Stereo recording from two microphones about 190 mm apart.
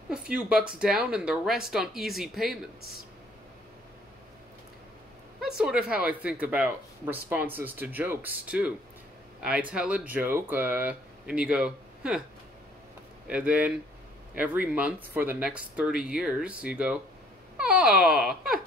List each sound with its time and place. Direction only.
0.1 s speech: 5° right (ahead or behind)
5.4 s speech: 5° right (ahead or behind)
13.3 s speech: 5° right (ahead or behind)